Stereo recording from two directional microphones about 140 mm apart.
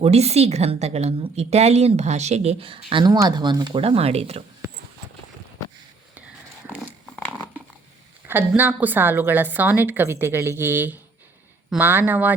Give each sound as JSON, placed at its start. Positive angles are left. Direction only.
{"t": 0.0, "sound": "a woman's voice", "side_deg": -50}
{"t": 2.9, "sound": "speech", "side_deg": -30}
{"t": 3.8, "sound": "a woman's voice", "side_deg": -45}
{"t": 6.7, "sound": "dog", "side_deg": -5}
{"t": 8.3, "sound": "a woman's voice", "side_deg": -15}